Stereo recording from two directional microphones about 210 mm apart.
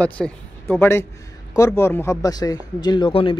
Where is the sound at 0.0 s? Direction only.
10° left (ahead or behind).